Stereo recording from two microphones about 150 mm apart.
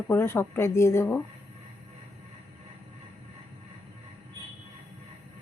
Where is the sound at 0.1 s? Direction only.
15° left (ahead or behind).